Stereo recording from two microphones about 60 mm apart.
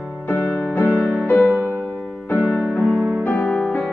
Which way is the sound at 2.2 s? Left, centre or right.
Left.